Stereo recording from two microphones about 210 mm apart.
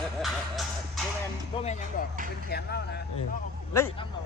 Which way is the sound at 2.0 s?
40° left (ahead or behind).